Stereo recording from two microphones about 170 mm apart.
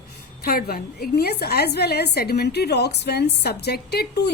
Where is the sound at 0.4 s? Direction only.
60° left (ahead or behind).